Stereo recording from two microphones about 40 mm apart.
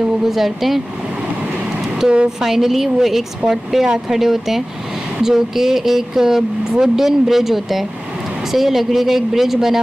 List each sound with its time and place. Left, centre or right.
0.0 s speech: centre
2.0 s a woman's voice: right
2.4 s speech: centre